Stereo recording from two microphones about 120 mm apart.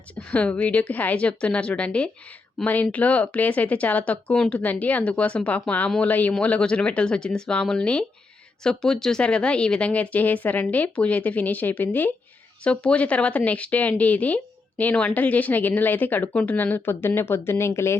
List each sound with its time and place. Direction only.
0.3 s speech: 10° left (ahead or behind)